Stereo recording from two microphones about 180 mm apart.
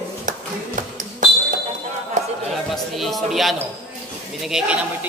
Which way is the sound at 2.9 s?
Centre (ahead or behind).